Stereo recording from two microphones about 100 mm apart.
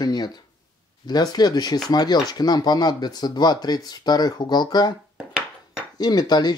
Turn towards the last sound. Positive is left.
turn(degrees=45)  # may be behind; listen again after turning